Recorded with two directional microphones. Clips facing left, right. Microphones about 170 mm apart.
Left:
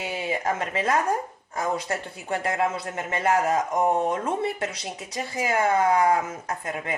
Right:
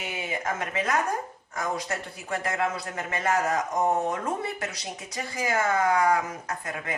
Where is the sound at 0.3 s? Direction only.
30° left (ahead or behind).